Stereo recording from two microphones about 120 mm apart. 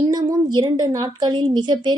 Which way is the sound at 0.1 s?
35° right (ahead or behind).